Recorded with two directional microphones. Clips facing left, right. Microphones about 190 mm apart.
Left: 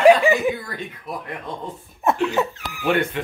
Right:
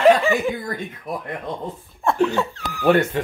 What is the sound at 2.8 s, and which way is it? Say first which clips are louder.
Speech: right 4 dB; 40° right (ahead or behind).